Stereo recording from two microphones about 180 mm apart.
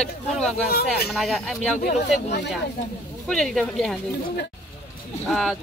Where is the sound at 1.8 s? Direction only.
65° left (ahead or behind).